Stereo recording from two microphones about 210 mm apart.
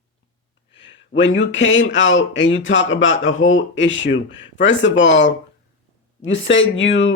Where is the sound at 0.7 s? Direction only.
60° left (ahead or behind).